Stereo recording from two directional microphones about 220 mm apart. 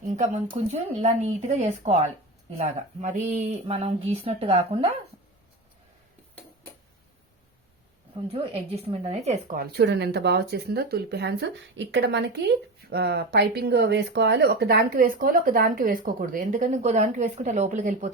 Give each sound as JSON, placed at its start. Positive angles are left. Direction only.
{"t": 0.1, "sound": "speech", "side_deg": -30}
{"t": 8.3, "sound": "speech", "side_deg": -25}
{"t": 9.7, "sound": "speech", "side_deg": -50}